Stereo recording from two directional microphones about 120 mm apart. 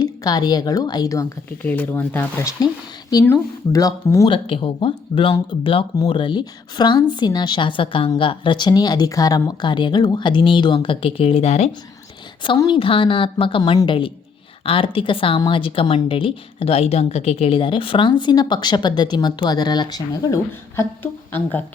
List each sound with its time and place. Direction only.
0.0 s speech: 35° left (ahead or behind)
1.5 s speech: 15° left (ahead or behind)
2.6 s speech: 30° left (ahead or behind)
4.3 s speech: 45° left (ahead or behind); by 11.7 s 65° left (ahead or behind)
12.6 s speech: 45° left (ahead or behind); by 20.8 s 30° left (ahead or behind)
21.0 s a woman's voice: 15° left (ahead or behind)